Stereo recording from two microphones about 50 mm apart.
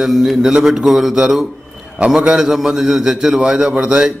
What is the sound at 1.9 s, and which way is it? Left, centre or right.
A man's voice, centre.